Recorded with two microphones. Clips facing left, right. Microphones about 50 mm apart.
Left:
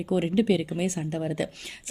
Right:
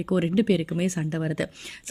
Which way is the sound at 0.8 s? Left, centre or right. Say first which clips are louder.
Right 2 dB; right.